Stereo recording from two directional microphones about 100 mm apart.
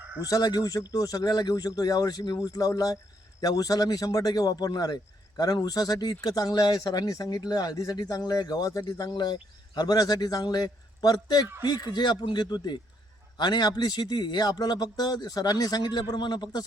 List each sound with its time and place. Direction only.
0.2 s speech: 40° left (ahead or behind)